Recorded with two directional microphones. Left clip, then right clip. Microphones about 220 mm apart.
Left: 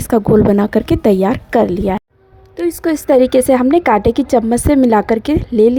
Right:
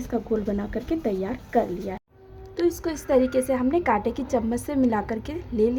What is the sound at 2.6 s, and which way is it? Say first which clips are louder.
A woman's voice: left 9 dB; 35° left (ahead or behind).